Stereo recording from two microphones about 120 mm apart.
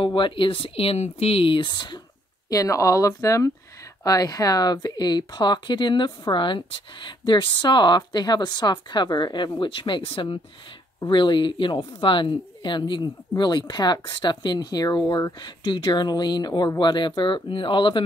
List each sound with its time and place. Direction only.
0.0 s speech: 45° left (ahead or behind)
2.5 s speech: 25° left (ahead or behind); by 18.0 s 45° left (ahead or behind)